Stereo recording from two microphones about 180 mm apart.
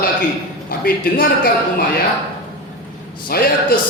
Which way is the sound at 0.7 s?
60° left (ahead or behind).